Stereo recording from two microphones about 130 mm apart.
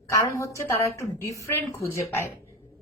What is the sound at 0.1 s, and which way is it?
A woman's voice, 25° left (ahead or behind).